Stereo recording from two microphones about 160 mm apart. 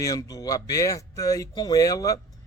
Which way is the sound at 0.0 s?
20° left (ahead or behind).